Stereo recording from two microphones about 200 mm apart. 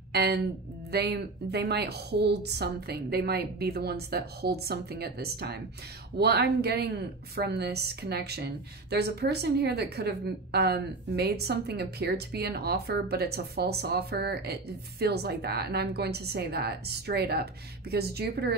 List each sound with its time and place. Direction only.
0.1 s a woman's voice: 55° right (ahead or behind)